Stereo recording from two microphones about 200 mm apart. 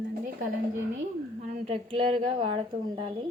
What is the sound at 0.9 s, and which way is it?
A woman's voice, 35° right (ahead or behind).